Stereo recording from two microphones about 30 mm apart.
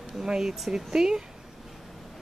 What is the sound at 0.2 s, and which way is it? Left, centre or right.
Speech, centre.